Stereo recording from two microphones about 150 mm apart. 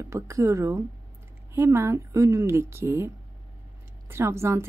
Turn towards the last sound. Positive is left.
turn(degrees=-20)  # may be behind; listen again after turning